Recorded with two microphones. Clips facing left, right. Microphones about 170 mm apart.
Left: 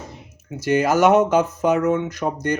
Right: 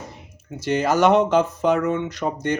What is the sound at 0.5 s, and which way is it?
Speech, centre (ahead or behind).